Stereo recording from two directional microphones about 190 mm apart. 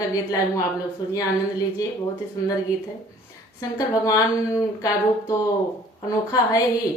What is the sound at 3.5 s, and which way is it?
A woman's voice, 20° left (ahead or behind).